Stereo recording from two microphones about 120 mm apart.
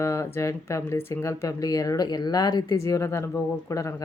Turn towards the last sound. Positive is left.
turn(degrees=30)  # may be behind; listen again after turning